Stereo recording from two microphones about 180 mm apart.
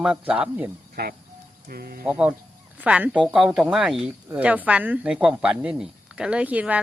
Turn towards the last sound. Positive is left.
turn(degrees=-10)  # may be behind; listen again after turning